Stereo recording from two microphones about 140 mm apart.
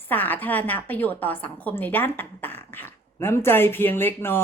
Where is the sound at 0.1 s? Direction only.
10° left (ahead or behind).